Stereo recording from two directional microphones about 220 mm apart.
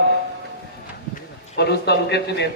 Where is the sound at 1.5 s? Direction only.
50° left (ahead or behind).